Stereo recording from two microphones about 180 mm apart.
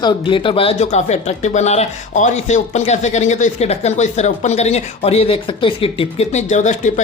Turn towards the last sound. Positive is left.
turn(degrees=40)  # may be behind; listen again after turning